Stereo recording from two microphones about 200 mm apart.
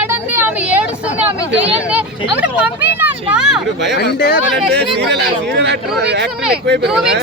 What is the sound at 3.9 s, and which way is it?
Speech, 50° left (ahead or behind).